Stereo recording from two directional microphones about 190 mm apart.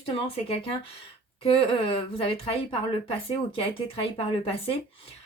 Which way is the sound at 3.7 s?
30° left (ahead or behind).